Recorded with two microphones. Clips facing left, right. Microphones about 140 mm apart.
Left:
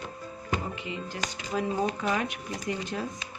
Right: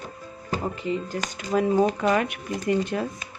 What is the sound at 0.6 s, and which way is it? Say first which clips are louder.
Speech: right 8 dB; 40° right (ahead or behind).